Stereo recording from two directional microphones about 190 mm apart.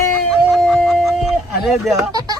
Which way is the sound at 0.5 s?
Centre (ahead or behind).